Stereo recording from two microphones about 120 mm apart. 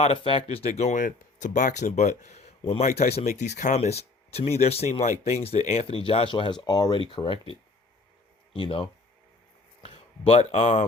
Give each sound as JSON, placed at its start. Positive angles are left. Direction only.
{"t": 0.0, "sound": "speech", "side_deg": 50}
{"t": 3.8, "sound": "speech", "side_deg": 60}
{"t": 8.5, "sound": "speech", "side_deg": 50}
{"t": 9.8, "sound": "speech", "side_deg": 60}